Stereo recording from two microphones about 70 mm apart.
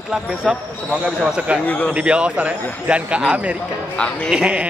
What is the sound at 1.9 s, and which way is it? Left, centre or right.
Speech, centre.